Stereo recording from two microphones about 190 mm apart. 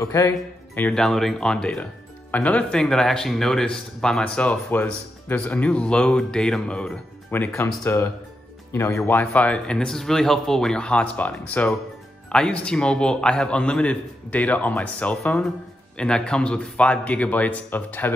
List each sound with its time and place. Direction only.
0.0 s a man's voice: 15° left (ahead or behind)
0.7 s a man's voice: 5° left (ahead or behind)